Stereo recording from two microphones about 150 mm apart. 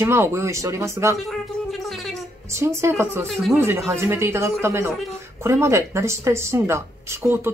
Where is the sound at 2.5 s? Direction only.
20° right (ahead or behind).